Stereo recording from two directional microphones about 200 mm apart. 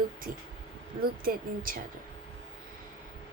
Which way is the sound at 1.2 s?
45° right (ahead or behind).